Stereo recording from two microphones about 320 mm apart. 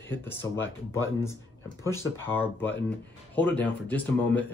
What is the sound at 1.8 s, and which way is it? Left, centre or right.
Speech, centre.